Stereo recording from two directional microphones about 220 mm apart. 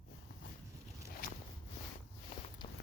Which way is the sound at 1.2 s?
40° left (ahead or behind).